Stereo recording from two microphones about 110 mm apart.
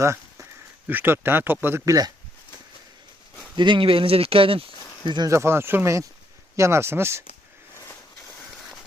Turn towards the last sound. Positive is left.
turn(degrees=-25)  # may be behind; listen again after turning